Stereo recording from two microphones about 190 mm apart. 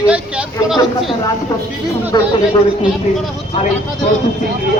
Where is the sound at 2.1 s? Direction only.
20° left (ahead or behind).